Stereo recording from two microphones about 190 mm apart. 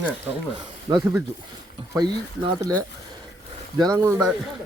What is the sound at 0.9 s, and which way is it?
A man's voice, 20° right (ahead or behind).